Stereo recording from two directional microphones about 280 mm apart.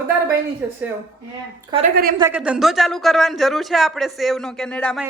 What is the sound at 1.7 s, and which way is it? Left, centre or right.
A woman's voice, centre.